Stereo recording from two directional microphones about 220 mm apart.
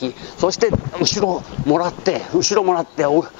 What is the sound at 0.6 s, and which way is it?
A man's voice, 15° left (ahead or behind).